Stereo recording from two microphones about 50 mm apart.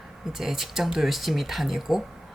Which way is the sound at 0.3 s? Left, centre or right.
Centre.